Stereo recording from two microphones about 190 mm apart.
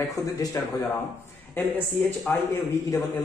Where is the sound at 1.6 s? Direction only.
5° left (ahead or behind).